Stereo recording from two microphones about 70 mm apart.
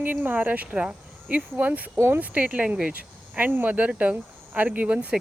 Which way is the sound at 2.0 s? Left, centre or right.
Right.